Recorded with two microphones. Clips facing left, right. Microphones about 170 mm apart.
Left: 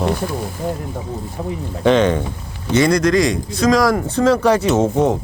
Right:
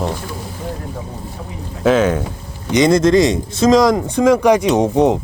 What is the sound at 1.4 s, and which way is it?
Speech, 40° left (ahead or behind).